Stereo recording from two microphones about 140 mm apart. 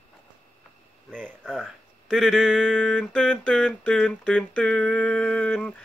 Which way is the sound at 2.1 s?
Centre (ahead or behind).